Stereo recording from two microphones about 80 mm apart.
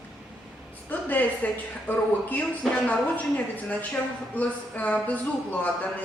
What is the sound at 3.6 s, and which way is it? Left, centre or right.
Speech, centre.